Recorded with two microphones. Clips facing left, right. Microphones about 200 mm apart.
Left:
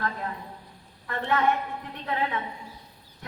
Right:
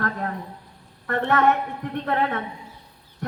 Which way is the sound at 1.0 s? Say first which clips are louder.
Right 5 dB; 60° right (ahead or behind).